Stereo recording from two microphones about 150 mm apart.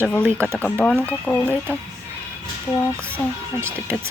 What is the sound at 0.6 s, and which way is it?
Speech, 5° left (ahead or behind).